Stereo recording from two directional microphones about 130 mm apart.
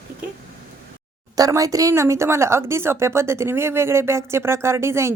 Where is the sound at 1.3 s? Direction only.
25° right (ahead or behind).